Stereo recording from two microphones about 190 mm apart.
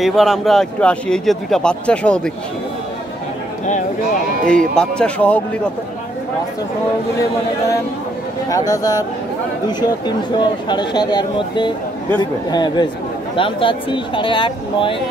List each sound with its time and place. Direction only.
0.0 s a man's voice: centre (ahead or behind)
4.5 s a man's voice: 5° left (ahead or behind)
8.5 s speech: 20° left (ahead or behind)